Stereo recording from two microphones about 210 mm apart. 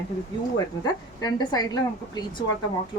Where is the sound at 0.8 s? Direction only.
20° left (ahead or behind).